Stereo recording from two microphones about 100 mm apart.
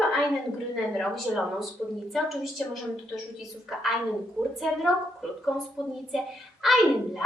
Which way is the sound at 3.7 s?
Centre (ahead or behind).